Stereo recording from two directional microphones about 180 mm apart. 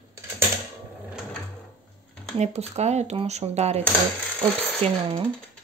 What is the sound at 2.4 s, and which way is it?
Speech, 35° right (ahead or behind).